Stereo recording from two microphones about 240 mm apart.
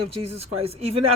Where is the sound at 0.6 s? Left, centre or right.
Right.